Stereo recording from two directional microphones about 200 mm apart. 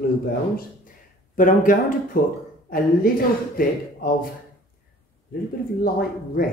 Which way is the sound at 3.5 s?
45° left (ahead or behind).